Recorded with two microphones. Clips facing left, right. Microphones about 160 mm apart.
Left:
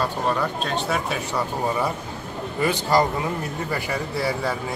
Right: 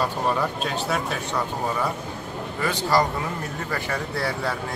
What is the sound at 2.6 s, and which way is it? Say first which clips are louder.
Speech: left 2 dB; 20° left (ahead or behind).